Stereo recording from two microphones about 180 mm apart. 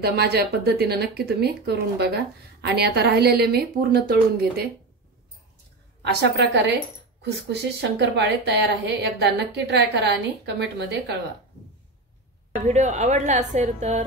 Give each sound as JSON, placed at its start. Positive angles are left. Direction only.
{"t": 0.0, "sound": "speech", "side_deg": -65}
{"t": 6.3, "sound": "a woman's voice", "side_deg": -70}
{"t": 12.6, "sound": "a woman's voice", "side_deg": -40}